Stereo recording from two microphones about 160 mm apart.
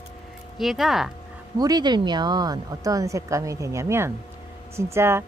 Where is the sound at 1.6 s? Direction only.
25° right (ahead or behind).